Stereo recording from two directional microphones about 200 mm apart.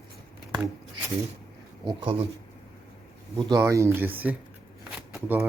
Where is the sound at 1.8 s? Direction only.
25° right (ahead or behind).